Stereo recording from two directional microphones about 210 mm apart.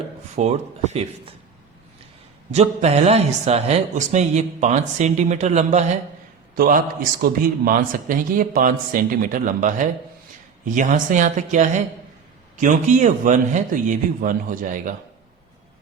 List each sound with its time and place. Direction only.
0.3 s a man's voice: 30° right (ahead or behind)
2.5 s a man's voice: 30° right (ahead or behind)